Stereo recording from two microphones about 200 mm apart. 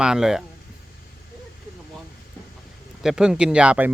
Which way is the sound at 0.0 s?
5° right (ahead or behind).